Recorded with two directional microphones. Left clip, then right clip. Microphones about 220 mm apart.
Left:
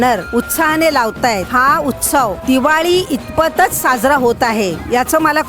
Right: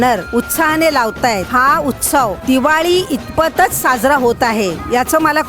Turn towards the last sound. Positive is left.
turn(degrees=0)  # may be behind; listen again after turning